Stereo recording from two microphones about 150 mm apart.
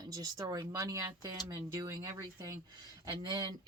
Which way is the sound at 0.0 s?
25° right (ahead or behind).